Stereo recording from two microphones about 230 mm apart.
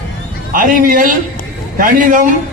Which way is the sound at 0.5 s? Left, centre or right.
Right.